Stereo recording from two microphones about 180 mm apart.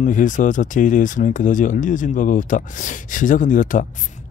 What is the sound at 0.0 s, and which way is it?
Speech, 45° left (ahead or behind).